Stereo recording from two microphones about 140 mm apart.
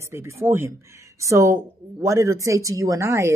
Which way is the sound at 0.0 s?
20° right (ahead or behind).